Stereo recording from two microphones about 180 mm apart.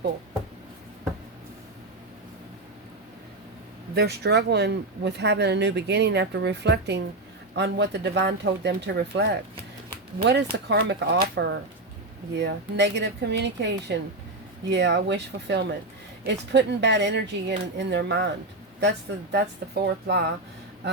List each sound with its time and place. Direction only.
3.9 s speech: 65° right (ahead or behind)